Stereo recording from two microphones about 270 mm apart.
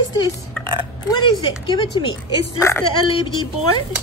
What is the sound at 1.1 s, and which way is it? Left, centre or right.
Speech, centre.